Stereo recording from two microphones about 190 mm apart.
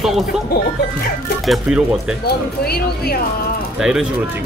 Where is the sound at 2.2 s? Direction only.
55° left (ahead or behind).